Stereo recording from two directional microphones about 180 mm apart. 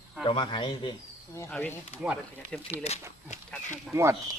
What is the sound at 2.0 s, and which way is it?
Speech, 5° right (ahead or behind).